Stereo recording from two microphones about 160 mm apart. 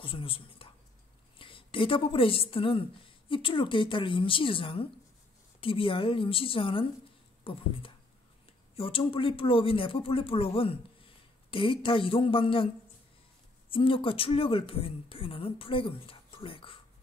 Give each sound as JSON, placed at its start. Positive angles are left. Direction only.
{"t": 0.0, "sound": "a woman's voice", "side_deg": 35}
{"t": 8.7, "sound": "speech", "side_deg": 35}
{"t": 13.7, "sound": "speech", "side_deg": 35}